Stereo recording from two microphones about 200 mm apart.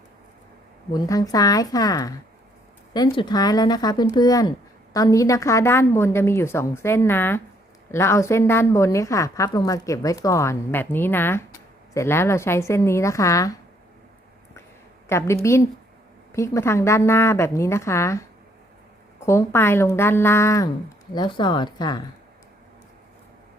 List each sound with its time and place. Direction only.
0.9 s a woman's voice: 15° left (ahead or behind)
15.1 s a woman's voice: 15° left (ahead or behind)